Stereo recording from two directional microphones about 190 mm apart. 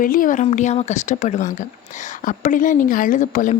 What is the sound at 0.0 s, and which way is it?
Speech, 45° left (ahead or behind).